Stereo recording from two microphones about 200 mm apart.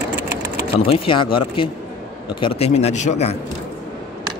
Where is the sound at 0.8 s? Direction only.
25° left (ahead or behind).